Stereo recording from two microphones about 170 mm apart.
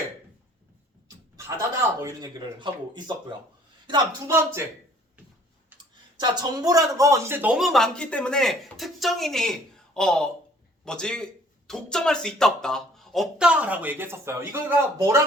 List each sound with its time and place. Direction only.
1.4 s a man's voice: 15° right (ahead or behind)
6.1 s a man's voice: 25° right (ahead or behind)
7.5 s speech: centre (ahead or behind); by 15.2 s 20° right (ahead or behind)